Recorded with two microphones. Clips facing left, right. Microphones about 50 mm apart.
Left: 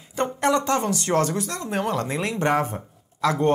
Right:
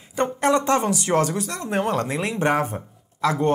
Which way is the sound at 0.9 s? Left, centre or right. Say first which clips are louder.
Right 1 dB; centre.